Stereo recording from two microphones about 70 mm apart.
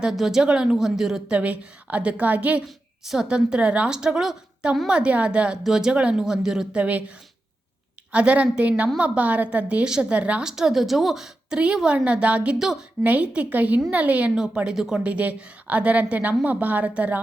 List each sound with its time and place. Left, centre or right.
0.0 s a woman's voice: centre
1.4 s a woman's voice: centre
8.1 s a woman's voice: centre
12.5 s a woman's voice: centre
13.0 s a woman's voice: right
15.0 s a woman's voice: centre